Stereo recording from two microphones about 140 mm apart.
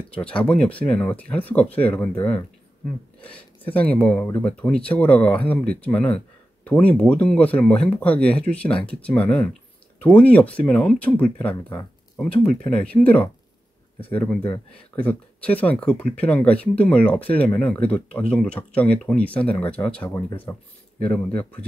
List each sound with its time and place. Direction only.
0.1 s speech: 10° left (ahead or behind)